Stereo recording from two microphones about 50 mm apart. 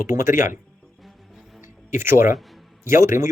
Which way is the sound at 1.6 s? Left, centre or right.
Right.